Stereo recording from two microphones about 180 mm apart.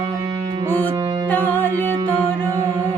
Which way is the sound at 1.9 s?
20° right (ahead or behind).